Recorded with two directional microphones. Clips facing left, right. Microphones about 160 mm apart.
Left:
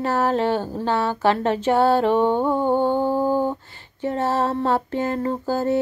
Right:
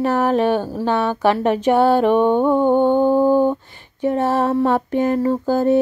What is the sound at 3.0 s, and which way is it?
Mantra, 15° right (ahead or behind).